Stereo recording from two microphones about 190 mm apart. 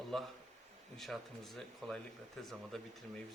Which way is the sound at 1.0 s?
Centre (ahead or behind).